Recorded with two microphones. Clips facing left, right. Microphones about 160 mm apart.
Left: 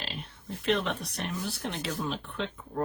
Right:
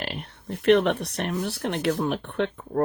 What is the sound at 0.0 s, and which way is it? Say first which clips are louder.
Speech: right 6 dB; 65° right (ahead or behind).